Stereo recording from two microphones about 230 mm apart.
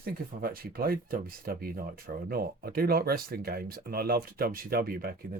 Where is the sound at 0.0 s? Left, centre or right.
Right.